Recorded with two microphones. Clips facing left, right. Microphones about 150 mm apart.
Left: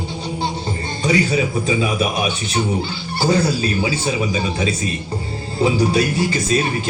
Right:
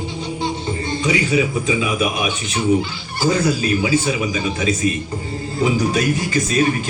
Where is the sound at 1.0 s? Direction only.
35° left (ahead or behind).